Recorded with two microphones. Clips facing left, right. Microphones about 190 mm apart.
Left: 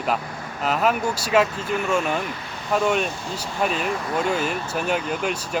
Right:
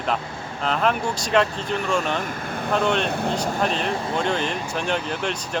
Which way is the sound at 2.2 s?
50° right (ahead or behind).